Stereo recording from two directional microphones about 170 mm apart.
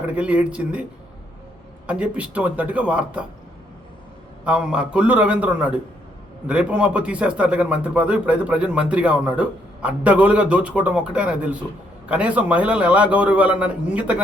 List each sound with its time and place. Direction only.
0.2 s speech: 5° right (ahead or behind)
1.9 s speech: 5° right (ahead or behind)
4.4 s speech: 5° right (ahead or behind)